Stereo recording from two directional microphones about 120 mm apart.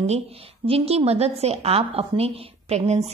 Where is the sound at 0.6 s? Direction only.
55° right (ahead or behind).